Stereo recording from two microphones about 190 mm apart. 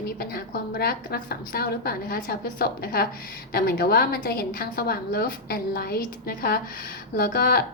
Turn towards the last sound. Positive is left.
turn(degrees=50)  # may be behind; listen again after turning